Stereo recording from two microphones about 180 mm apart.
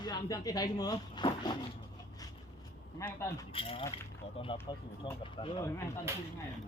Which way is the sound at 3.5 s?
30° left (ahead or behind).